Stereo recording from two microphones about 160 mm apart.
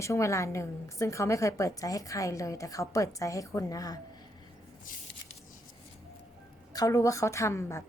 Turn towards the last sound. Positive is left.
turn(degrees=20)  # may be behind; listen again after turning